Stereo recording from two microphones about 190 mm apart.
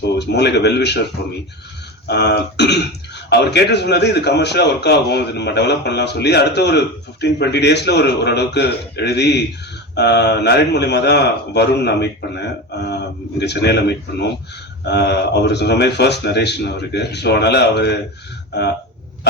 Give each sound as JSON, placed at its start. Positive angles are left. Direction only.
{"t": 0.2, "sound": "a man's voice", "side_deg": 60}
{"t": 2.0, "sound": "a man's voice", "side_deg": 60}